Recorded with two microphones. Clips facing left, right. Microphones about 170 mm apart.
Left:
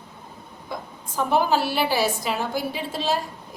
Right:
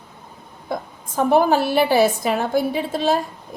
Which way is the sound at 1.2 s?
55° right (ahead or behind).